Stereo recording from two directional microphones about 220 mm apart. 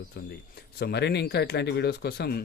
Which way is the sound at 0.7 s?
50° left (ahead or behind).